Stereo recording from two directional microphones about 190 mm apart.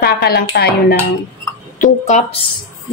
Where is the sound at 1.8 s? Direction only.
40° left (ahead or behind).